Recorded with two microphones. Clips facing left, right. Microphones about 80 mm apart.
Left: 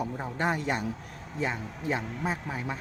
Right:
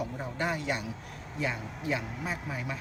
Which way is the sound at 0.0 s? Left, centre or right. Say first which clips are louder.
Left 3 dB; left.